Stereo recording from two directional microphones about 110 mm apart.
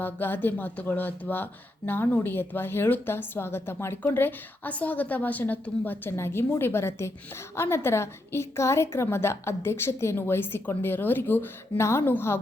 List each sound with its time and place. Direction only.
0.0 s a woman's voice: 20° left (ahead or behind)